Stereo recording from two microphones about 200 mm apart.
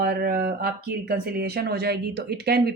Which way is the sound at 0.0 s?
50° right (ahead or behind).